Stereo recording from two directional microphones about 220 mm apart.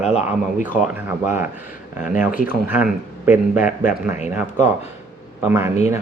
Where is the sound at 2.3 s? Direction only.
40° left (ahead or behind).